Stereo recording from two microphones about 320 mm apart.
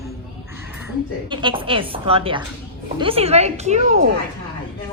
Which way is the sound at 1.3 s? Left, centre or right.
Centre.